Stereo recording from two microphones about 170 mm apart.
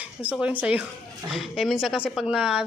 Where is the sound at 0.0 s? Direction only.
10° right (ahead or behind).